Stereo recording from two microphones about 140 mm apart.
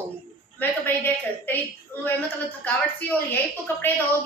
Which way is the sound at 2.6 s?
10° left (ahead or behind).